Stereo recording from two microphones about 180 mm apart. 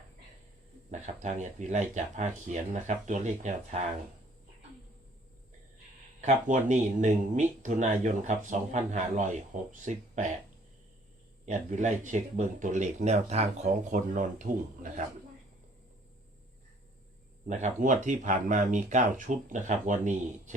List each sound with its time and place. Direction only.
0.9 s speech: 40° right (ahead or behind)
6.2 s speech: 45° right (ahead or behind)
11.4 s speech: 40° right (ahead or behind)
17.5 s speech: 45° right (ahead or behind)